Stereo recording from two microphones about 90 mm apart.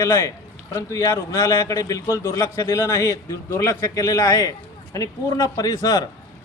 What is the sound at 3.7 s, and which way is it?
A man's voice, 45° left (ahead or behind).